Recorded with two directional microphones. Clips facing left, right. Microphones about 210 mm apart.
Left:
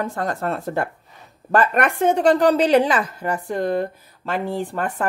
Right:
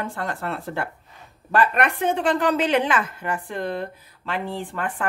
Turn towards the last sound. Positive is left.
turn(degrees=40)  # may be behind; listen again after turning